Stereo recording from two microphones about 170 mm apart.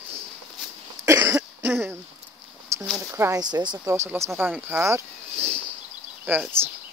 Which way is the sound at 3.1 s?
15° right (ahead or behind).